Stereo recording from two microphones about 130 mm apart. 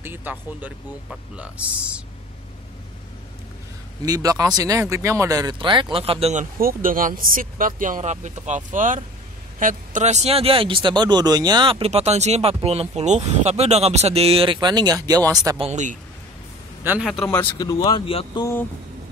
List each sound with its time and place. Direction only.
0.0 s speech: 15° right (ahead or behind)
4.0 s speech: 30° right (ahead or behind); by 6.4 s 50° right (ahead or behind)
6.6 s speech: 90° right; by 11.9 s 40° right (ahead or behind)
11.9 s speech: 60° right (ahead or behind); by 15.6 s 30° right (ahead or behind)
15.7 s a man's voice: 70° right (ahead or behind)
17.0 s speech: centre (ahead or behind)
17.6 s speech: 30° left (ahead or behind)